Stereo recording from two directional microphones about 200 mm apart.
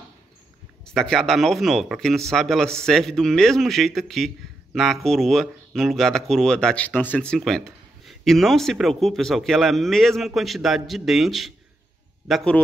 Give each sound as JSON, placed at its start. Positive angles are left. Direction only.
{"t": 0.8, "sound": "speech", "side_deg": 5}